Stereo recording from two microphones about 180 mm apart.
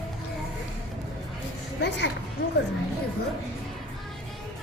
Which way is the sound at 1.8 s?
75° left (ahead or behind).